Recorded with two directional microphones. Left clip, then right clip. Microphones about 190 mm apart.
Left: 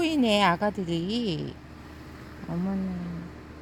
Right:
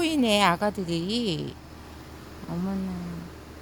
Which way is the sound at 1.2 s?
50° right (ahead or behind).